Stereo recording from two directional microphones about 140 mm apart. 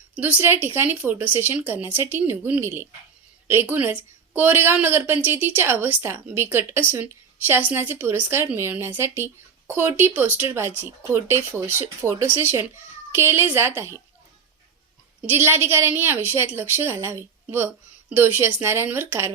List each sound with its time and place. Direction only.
0.2 s a woman's voice: 15° right (ahead or behind)
15.3 s a woman's voice: 15° right (ahead or behind)